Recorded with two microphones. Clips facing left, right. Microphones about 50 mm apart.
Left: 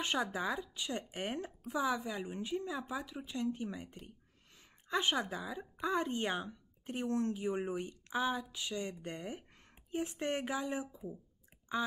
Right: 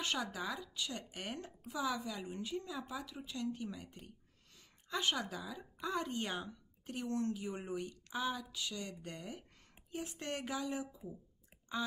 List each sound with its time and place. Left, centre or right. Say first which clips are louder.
0.0 s speech: left 4 dB; left